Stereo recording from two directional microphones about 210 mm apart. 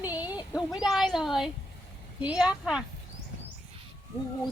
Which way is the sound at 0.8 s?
Centre (ahead or behind).